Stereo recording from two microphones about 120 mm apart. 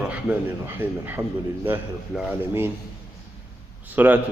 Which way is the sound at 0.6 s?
15° right (ahead or behind).